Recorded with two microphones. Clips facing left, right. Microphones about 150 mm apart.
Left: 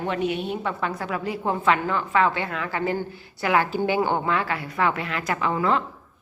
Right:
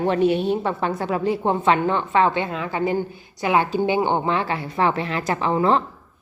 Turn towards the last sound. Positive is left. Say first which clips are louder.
# right 4 dB
turn(degrees=-30)  # may be behind; listen again after turning